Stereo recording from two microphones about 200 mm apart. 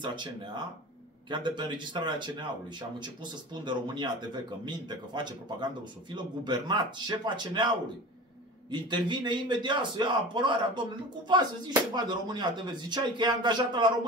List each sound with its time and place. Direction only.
0.0 s speech: 25° right (ahead or behind)
1.3 s speech: 25° right (ahead or behind)
3.6 s speech: 25° right (ahead or behind)